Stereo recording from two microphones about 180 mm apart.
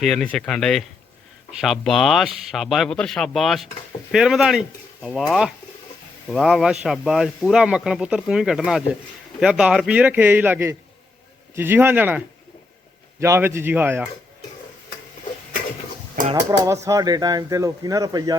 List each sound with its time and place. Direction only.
0.0 s a man's voice: 5° left (ahead or behind)
16.6 s speech: 15° right (ahead or behind)